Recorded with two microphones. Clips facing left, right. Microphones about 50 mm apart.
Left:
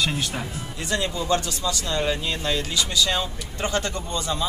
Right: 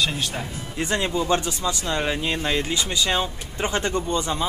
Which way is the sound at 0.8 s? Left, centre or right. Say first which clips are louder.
Right 2 dB; right.